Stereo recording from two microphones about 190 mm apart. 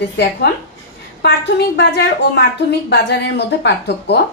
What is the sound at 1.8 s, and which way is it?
A woman's voice, 65° left (ahead or behind).